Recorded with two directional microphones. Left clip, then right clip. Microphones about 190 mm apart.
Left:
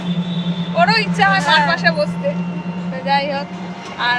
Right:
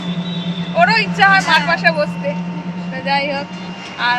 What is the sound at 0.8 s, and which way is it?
Speech, 10° right (ahead or behind).